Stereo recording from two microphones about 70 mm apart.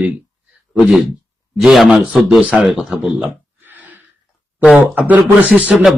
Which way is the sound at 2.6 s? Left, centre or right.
Centre.